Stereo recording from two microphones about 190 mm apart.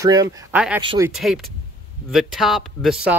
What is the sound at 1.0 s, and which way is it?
Speech, centre (ahead or behind).